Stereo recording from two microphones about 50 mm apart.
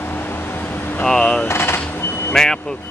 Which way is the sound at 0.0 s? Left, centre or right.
Left.